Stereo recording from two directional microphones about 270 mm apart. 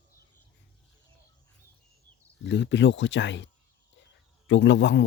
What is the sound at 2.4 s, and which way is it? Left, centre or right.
Speech, left.